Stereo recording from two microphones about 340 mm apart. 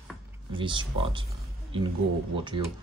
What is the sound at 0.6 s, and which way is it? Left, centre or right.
Speech, centre.